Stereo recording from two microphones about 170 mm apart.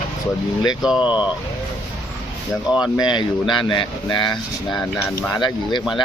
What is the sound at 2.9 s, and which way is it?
Speech, 25° left (ahead or behind).